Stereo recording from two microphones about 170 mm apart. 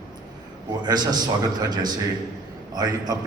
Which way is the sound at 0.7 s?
25° right (ahead or behind).